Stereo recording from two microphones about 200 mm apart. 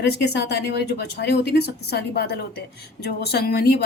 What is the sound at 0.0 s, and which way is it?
A woman's voice, 60° left (ahead or behind).